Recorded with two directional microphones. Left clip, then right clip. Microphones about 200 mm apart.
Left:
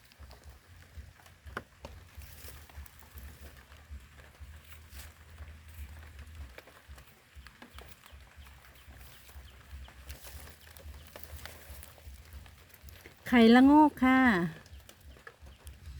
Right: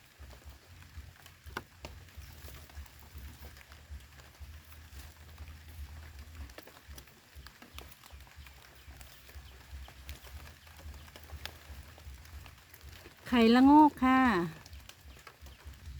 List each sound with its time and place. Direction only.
13.2 s speech: 20° left (ahead or behind)